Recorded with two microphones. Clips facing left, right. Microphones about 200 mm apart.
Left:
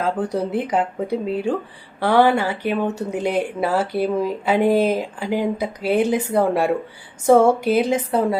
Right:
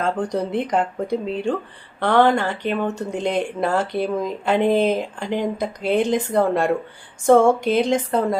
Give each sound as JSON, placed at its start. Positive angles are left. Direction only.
{"t": 0.0, "sound": "speech", "side_deg": 5}